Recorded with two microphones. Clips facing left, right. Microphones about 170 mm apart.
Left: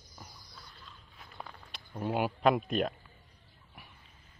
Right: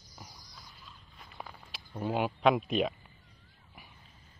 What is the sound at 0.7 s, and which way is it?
Walk, 5° right (ahead or behind).